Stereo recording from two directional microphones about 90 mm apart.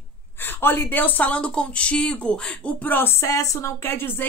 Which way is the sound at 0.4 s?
25° left (ahead or behind).